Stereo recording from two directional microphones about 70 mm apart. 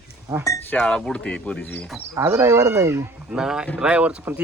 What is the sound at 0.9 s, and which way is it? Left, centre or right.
Speech, centre.